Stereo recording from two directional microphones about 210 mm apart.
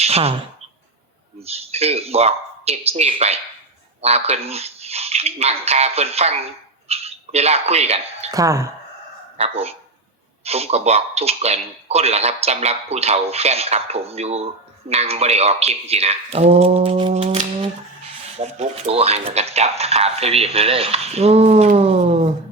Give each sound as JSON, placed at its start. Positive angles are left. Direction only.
{"t": 0.0, "sound": "speech", "side_deg": -30}
{"t": 1.4, "sound": "speech", "side_deg": -30}
{"t": 8.3, "sound": "speech", "side_deg": -15}
{"t": 9.4, "sound": "speech", "side_deg": -30}